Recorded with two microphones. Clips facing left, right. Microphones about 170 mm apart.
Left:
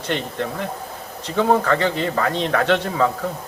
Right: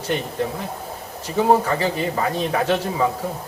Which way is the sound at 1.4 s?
75° left (ahead or behind).